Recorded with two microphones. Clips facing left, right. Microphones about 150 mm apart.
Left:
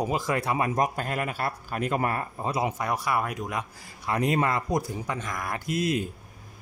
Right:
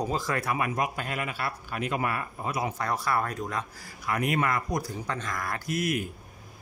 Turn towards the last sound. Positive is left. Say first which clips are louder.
# left 2 dB
turn(degrees=25)  # may be behind; listen again after turning